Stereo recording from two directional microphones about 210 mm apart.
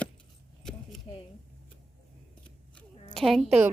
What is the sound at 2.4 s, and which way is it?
Scissors, 5° left (ahead or behind).